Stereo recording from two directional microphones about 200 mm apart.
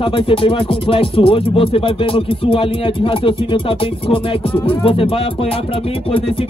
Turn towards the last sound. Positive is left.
turn(degrees=25)  # may be behind; listen again after turning